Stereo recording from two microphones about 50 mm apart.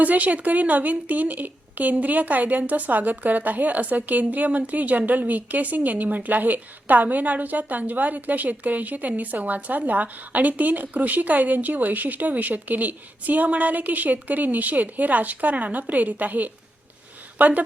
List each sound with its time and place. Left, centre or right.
0.0 s a woman's voice: right